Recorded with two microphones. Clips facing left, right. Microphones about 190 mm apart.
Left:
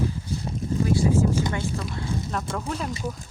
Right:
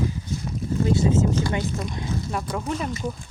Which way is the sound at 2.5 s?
5° right (ahead or behind).